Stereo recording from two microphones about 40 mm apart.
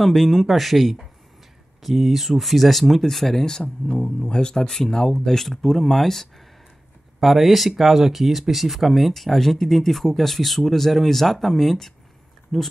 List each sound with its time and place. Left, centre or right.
0.0 s speech: centre
3.8 s speech: left; by 6.2 s centre
7.2 s speech: centre